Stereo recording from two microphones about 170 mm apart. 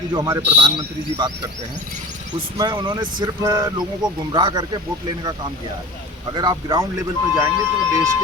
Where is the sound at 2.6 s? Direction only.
25° right (ahead or behind).